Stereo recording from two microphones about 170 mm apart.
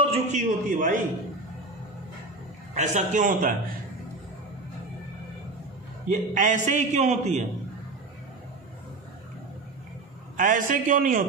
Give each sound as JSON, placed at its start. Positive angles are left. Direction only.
{"t": 0.0, "sound": "a man's voice", "side_deg": -40}
{"t": 2.7, "sound": "a man's voice", "side_deg": -45}
{"t": 6.0, "sound": "a man's voice", "side_deg": -50}
{"t": 10.3, "sound": "a man's voice", "side_deg": -50}